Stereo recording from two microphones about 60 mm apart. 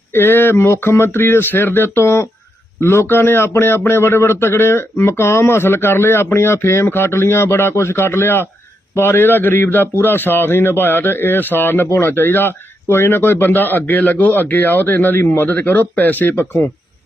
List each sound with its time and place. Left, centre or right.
0.1 s a man's voice: left